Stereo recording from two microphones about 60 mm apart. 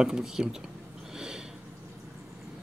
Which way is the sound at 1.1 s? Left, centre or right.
Centre.